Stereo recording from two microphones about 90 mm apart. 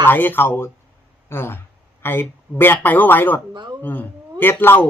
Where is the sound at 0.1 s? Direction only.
20° left (ahead or behind).